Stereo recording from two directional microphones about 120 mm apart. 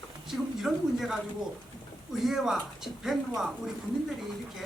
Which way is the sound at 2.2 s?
5° right (ahead or behind).